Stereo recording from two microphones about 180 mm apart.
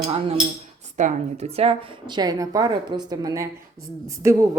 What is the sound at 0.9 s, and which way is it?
A woman's voice, 40° right (ahead or behind).